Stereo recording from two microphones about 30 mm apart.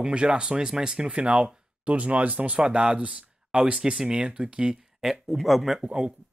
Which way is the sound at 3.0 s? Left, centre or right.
Right.